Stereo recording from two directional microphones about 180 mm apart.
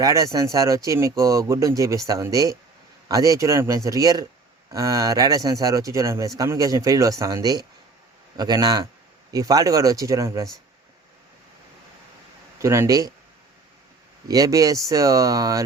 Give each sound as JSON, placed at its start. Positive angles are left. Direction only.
{"t": 0.0, "sound": "speech", "side_deg": -20}
{"t": 12.5, "sound": "speech", "side_deg": -15}
{"t": 14.3, "sound": "speech", "side_deg": -20}